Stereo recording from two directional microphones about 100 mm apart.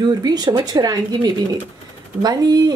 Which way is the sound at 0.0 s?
40° right (ahead or behind).